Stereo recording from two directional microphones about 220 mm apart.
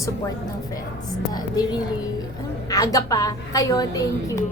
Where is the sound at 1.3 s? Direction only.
20° left (ahead or behind).